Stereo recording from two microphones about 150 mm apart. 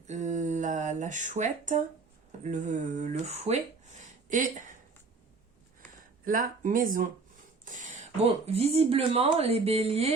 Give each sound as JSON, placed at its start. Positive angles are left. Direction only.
{"t": 0.1, "sound": "speech", "side_deg": -55}
{"t": 4.3, "sound": "speech", "side_deg": -60}
{"t": 6.2, "sound": "speech", "side_deg": -65}